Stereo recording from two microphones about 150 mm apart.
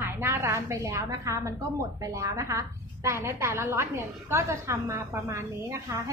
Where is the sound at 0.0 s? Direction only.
15° right (ahead or behind).